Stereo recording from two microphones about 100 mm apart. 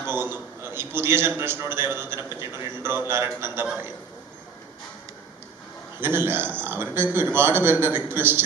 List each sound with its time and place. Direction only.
0.0 s a man's voice: 20° right (ahead or behind)
6.0 s a man's voice: 20° right (ahead or behind)